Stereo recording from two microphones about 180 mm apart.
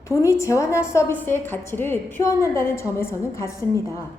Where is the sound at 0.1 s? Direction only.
15° left (ahead or behind).